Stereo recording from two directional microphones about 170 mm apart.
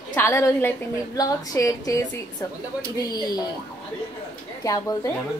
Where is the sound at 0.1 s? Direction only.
15° left (ahead or behind).